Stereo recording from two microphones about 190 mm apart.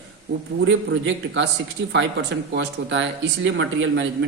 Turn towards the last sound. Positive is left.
turn(degrees=-75)  # may be behind; listen again after turning